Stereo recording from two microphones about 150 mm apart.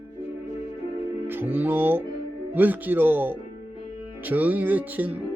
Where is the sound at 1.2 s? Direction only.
15° right (ahead or behind).